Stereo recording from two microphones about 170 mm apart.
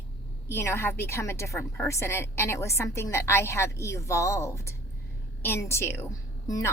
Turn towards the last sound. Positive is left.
turn(degrees=20)  # may be behind; listen again after turning